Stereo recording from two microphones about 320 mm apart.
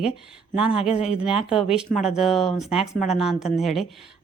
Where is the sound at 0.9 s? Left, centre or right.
Centre.